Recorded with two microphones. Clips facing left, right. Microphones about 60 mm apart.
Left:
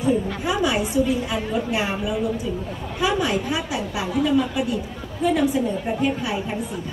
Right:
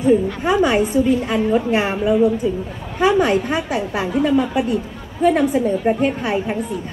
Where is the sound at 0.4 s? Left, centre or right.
Right.